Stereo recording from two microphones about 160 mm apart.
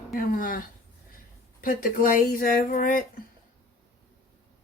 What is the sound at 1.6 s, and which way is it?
Speech, 60° left (ahead or behind).